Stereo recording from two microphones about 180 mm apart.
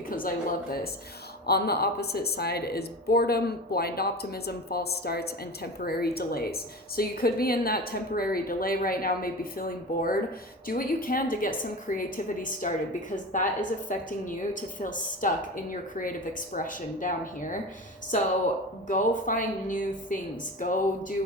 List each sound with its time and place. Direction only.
0.1 s a woman's voice: 50° left (ahead or behind)
18.9 s a woman's voice: 45° left (ahead or behind)